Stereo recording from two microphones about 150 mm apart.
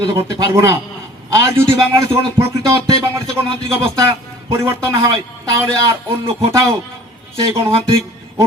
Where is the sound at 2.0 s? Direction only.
30° right (ahead or behind).